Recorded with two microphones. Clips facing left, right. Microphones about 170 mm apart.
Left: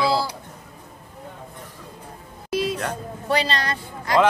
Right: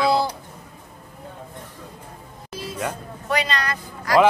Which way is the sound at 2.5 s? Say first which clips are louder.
Left 10 dB; 75° left (ahead or behind).